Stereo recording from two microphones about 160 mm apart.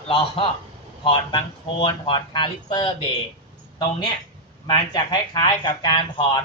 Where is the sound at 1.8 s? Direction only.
30° left (ahead or behind).